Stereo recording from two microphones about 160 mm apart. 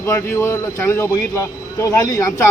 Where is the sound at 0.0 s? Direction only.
15° left (ahead or behind).